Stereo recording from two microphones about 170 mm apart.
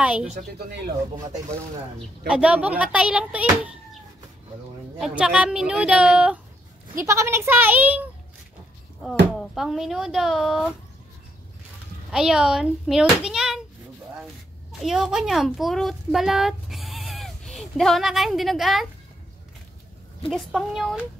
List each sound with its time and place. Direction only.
0.0 s speech: 10° right (ahead or behind)
0.3 s speech: 40° right (ahead or behind)
2.0 s speech: 5° right (ahead or behind)
4.9 s speech: 5° right (ahead or behind)
9.4 s speech: centre (ahead or behind)
12.1 s speech: 5° right (ahead or behind)
14.7 s a child's voice: centre (ahead or behind)
20.2 s speech: centre (ahead or behind)